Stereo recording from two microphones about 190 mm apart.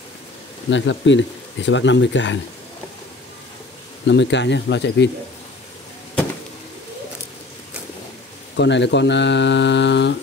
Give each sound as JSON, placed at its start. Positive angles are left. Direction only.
{"t": 0.7, "sound": "speech", "side_deg": 75}
{"t": 4.1, "sound": "speech", "side_deg": 65}
{"t": 8.5, "sound": "speech", "side_deg": 65}